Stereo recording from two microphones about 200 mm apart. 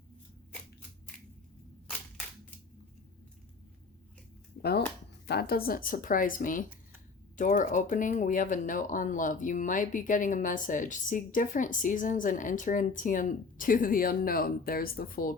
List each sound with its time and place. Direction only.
5.2 s speech: 55° left (ahead or behind)